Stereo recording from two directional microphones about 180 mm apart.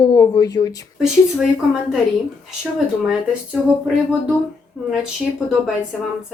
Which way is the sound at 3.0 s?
5° right (ahead or behind).